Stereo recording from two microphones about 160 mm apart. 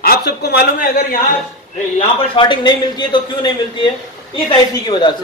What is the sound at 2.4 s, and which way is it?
A man's voice, 30° left (ahead or behind).